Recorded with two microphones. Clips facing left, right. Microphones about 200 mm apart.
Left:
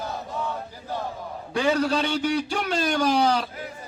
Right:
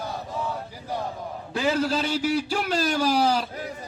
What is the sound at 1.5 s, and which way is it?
A man's voice, centre (ahead or behind).